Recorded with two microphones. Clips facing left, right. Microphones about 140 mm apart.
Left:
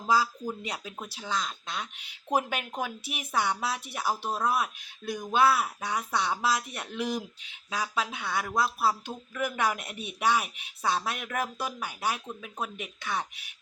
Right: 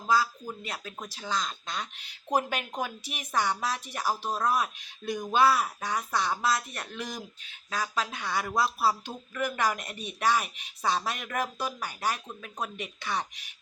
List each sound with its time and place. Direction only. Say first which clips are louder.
0.4 s speech: left 3 dB; 15° left (ahead or behind)